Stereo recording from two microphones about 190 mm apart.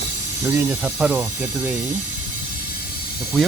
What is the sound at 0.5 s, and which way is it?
Speech, 10° right (ahead or behind).